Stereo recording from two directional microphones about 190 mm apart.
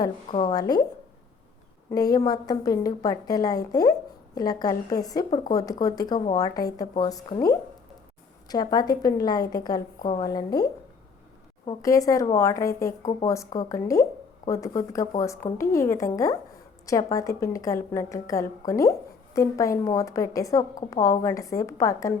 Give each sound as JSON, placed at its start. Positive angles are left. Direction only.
{"t": 0.3, "sound": "a woman's voice", "side_deg": 20}
{"t": 1.9, "sound": "a woman's voice", "side_deg": 20}